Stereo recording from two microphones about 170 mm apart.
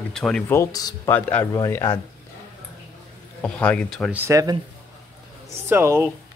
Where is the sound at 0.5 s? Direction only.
20° left (ahead or behind).